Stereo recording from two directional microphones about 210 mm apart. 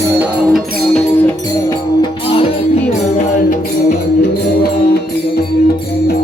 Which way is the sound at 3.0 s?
35° left (ahead or behind).